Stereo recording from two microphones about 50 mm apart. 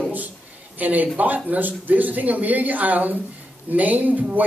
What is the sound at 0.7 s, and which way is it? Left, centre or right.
Speech, right.